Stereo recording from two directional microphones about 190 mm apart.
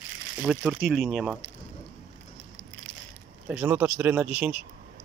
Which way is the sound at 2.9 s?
30° left (ahead or behind).